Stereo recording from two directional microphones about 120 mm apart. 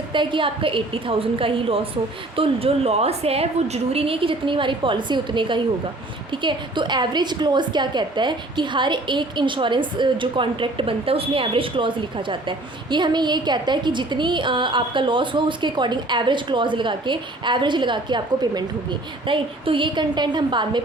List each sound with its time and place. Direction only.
0.1 s a woman's voice: 40° right (ahead or behind)